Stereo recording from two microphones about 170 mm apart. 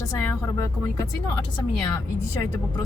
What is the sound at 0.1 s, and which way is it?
Speech, 15° left (ahead or behind).